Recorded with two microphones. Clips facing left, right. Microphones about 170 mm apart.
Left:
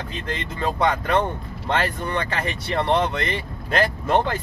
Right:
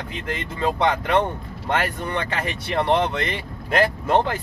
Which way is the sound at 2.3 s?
10° right (ahead or behind).